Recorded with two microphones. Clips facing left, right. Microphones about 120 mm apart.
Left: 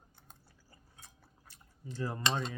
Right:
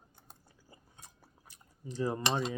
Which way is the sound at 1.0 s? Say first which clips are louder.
Right 2 dB; 15° right (ahead or behind).